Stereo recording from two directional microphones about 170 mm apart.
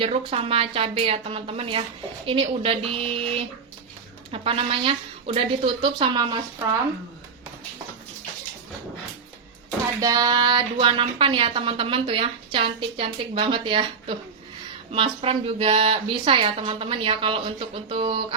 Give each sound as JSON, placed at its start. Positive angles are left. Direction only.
{"t": 0.0, "sound": "a woman's voice", "side_deg": -35}
{"t": 10.0, "sound": "a woman's voice", "side_deg": -20}